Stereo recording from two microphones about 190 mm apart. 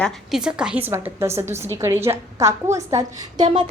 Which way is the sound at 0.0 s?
Centre (ahead or behind).